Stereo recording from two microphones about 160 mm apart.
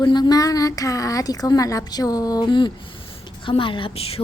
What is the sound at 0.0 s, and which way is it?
A woman's voice, 25° left (ahead or behind).